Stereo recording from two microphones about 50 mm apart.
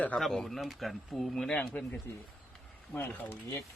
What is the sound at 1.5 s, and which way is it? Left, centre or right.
Speech, left.